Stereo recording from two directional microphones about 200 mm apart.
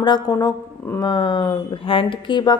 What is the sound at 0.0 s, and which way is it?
Speech, 20° left (ahead or behind).